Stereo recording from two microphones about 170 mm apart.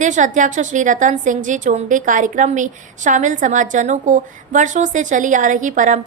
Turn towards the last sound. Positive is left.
turn(degrees=-50)  # may be behind; listen again after turning